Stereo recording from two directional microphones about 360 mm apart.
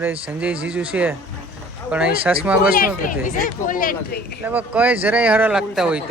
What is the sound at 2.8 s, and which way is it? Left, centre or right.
Speech, left.